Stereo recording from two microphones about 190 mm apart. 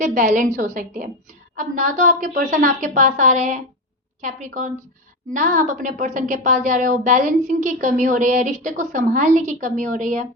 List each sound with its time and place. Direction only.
0.0 s a woman's voice: 40° right (ahead or behind)